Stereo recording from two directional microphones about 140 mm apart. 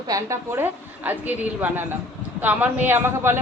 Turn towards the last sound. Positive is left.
turn(degrees=-15)  # may be behind; listen again after turning